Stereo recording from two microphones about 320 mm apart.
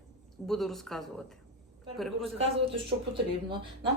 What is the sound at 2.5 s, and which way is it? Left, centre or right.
Speech, centre.